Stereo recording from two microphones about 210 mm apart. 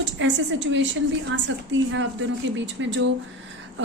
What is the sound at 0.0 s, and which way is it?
Speech, 60° right (ahead or behind).